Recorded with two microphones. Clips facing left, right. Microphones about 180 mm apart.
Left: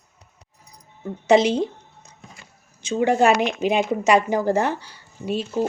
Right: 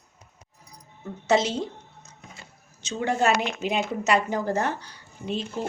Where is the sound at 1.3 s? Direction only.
15° left (ahead or behind).